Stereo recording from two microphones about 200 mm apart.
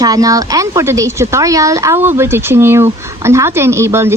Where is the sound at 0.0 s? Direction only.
20° right (ahead or behind).